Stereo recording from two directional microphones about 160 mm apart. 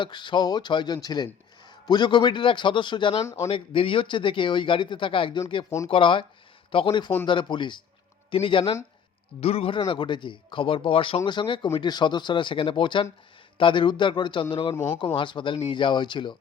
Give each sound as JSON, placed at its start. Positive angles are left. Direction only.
{"t": 0.0, "sound": "speech", "side_deg": 30}
{"t": 3.2, "sound": "speech", "side_deg": 15}
{"t": 3.5, "sound": "speech", "side_deg": 35}